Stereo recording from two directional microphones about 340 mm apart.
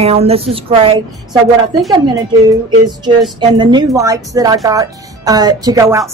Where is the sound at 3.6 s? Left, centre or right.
Centre.